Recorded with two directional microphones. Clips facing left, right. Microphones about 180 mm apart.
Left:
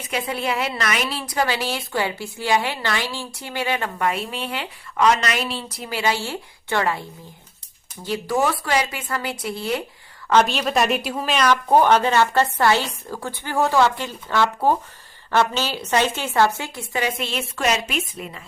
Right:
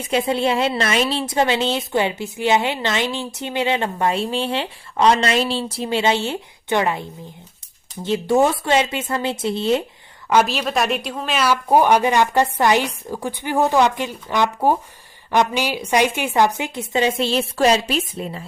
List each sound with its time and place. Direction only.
0.0 s a woman's voice: 25° right (ahead or behind)
10.4 s speech: centre (ahead or behind)
11.3 s a woman's voice: 10° right (ahead or behind); by 18.4 s 30° right (ahead or behind)